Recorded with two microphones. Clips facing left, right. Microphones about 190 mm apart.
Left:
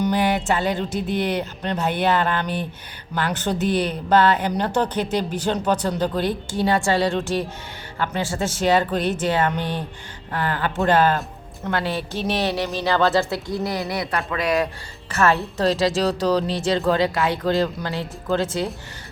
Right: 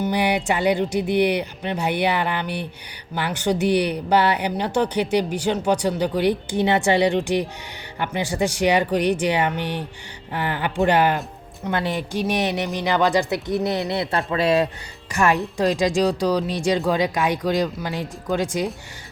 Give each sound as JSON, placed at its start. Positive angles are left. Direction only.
{"t": 0.1, "sound": "a woman's voice", "side_deg": -15}
{"t": 15.1, "sound": "speech", "side_deg": -15}